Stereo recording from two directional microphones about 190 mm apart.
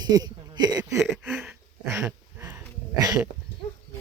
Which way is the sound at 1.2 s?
Centre (ahead or behind).